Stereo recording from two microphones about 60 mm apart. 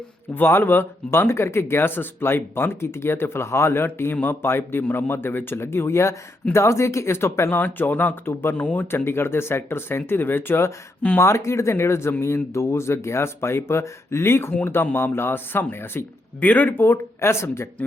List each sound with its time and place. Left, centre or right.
0.3 s speech: left
7.6 s speech: left
8.3 s speech: left
8.6 s speech: left
9.0 s speech: left
11.2 s speech: left
16.4 s speech: left